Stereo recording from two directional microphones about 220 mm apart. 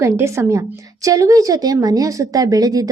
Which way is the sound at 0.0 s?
10° right (ahead or behind).